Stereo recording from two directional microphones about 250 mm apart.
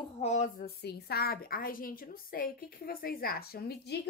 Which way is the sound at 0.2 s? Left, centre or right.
Left.